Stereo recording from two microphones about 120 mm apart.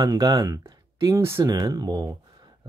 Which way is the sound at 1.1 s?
20° right (ahead or behind).